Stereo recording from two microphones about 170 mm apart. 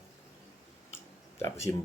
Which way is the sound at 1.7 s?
15° left (ahead or behind).